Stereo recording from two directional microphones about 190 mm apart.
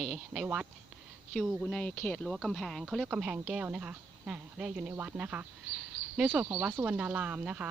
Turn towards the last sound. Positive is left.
turn(degrees=-10)  # may be behind; listen again after turning